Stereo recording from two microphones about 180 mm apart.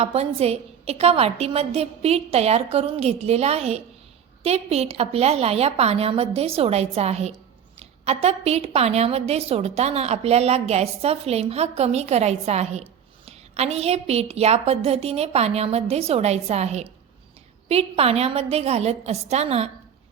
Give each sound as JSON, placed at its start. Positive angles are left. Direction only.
{"t": 0.0, "sound": "a woman's voice", "side_deg": -35}